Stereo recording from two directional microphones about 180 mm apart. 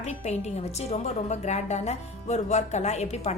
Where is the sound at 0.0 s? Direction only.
35° left (ahead or behind).